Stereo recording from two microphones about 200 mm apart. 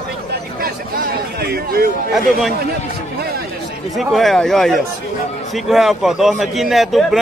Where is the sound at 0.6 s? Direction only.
50° right (ahead or behind).